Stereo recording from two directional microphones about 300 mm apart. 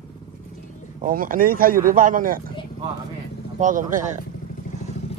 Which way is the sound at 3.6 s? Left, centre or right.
Right.